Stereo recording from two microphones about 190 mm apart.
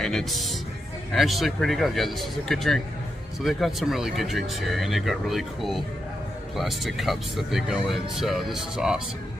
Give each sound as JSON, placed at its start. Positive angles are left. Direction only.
{"t": 0.0, "sound": "speech", "side_deg": 0}